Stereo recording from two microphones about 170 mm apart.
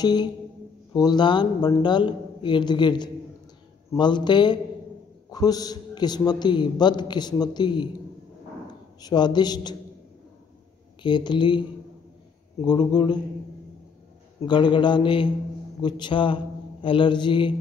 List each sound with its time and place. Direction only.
0.0 s a man's voice: 25° left (ahead or behind)
9.0 s a man's voice: 25° left (ahead or behind)
11.0 s a man's voice: 25° left (ahead or behind)
12.6 s a man's voice: 25° left (ahead or behind)
14.4 s a man's voice: 25° left (ahead or behind)